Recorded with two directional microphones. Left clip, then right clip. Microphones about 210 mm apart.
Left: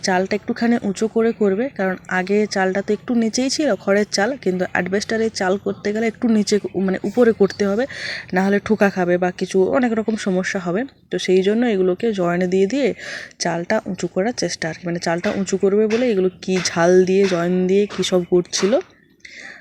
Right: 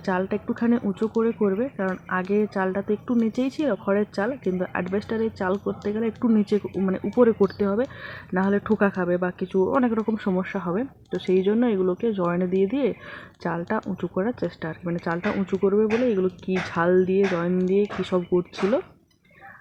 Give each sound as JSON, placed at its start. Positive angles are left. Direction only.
{"t": 0.1, "sound": "speech", "side_deg": 20}